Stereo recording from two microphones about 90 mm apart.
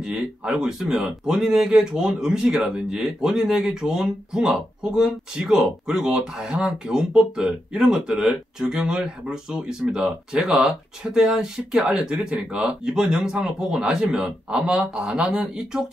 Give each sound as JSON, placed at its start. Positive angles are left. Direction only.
{"t": 0.0, "sound": "speech", "side_deg": -10}